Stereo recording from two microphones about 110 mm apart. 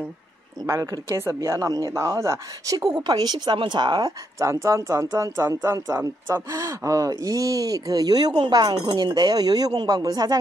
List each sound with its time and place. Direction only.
0.7 s speech: 25° right (ahead or behind)